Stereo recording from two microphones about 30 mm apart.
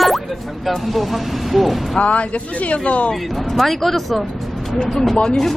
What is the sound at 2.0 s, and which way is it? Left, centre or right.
Speech, left.